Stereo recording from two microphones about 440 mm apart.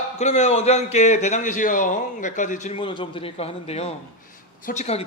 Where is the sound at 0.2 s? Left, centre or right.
Centre.